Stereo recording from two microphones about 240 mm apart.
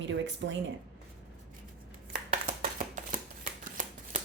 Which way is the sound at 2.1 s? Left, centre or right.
Right.